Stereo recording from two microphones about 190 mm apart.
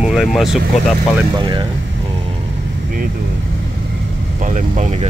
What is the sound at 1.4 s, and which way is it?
Speech, 25° right (ahead or behind).